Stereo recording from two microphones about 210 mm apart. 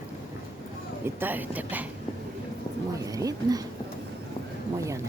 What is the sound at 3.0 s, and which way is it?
Speech, 15° right (ahead or behind).